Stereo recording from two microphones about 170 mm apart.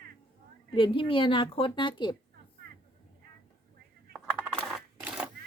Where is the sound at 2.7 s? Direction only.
65° right (ahead or behind).